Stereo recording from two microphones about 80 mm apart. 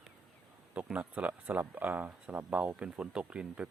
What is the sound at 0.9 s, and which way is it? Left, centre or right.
Speech, centre.